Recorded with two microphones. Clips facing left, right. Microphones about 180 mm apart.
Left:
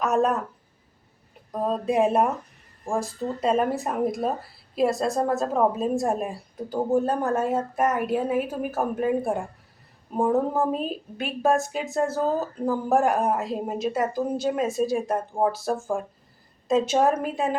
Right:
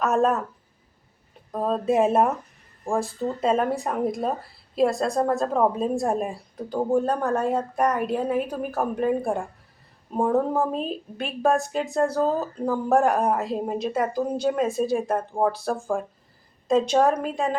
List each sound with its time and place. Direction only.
0.0 s a woman's voice: centre (ahead or behind)
1.5 s a woman's voice: centre (ahead or behind)